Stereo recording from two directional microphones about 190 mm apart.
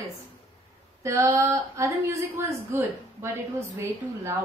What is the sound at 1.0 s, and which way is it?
A woman's voice, 15° right (ahead or behind).